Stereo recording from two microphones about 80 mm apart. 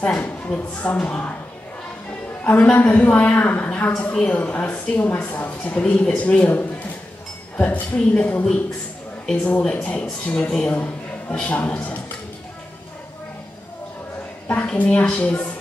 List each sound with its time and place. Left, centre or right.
0.5 s speech: centre
1.0 s a woman's voice: left
2.4 s a woman's voice: centre
9.6 s a man's voice: centre
14.5 s speech: centre